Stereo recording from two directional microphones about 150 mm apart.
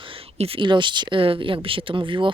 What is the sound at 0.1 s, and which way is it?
Speech, 40° right (ahead or behind).